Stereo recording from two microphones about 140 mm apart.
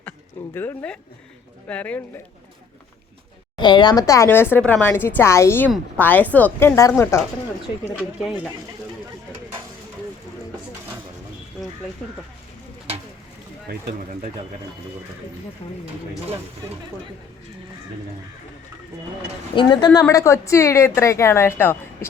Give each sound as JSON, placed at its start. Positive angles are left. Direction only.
{"t": 0.5, "sound": "speech", "side_deg": 15}
{"t": 3.6, "sound": "a woman's voice", "side_deg": 35}
{"t": 15.6, "sound": "speech", "side_deg": 40}
{"t": 19.5, "sound": "a woman's voice", "side_deg": 35}